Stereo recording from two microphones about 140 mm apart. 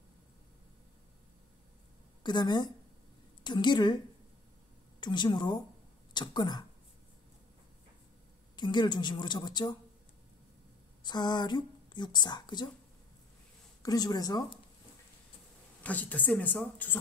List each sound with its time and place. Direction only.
2.2 s a woman's voice: 30° left (ahead or behind)
5.0 s a woman's voice: 35° left (ahead or behind)
8.5 s a woman's voice: 35° left (ahead or behind)
11.1 s a woman's voice: 30° left (ahead or behind)
13.8 s speech: 30° left (ahead or behind)
15.8 s speech: 10° left (ahead or behind)